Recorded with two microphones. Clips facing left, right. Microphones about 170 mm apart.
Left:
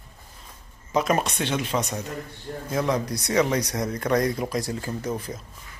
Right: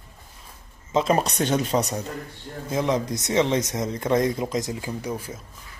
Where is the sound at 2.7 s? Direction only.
20° right (ahead or behind).